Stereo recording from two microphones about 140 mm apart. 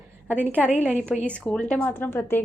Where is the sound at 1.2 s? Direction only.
10° left (ahead or behind).